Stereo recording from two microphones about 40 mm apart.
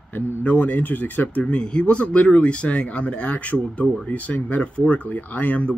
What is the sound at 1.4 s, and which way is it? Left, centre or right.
Speech, left.